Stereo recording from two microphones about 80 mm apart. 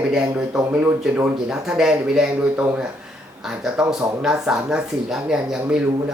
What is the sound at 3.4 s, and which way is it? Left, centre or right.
Speech, centre.